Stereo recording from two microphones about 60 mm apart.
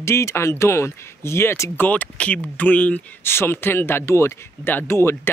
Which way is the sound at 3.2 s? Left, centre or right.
Left.